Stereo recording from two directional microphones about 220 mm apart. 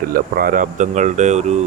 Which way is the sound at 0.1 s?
40° right (ahead or behind).